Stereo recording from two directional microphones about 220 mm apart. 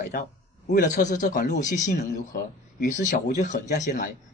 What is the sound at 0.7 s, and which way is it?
A man's voice, 35° left (ahead or behind).